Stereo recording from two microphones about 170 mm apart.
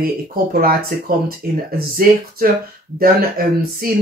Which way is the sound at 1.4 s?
60° right (ahead or behind).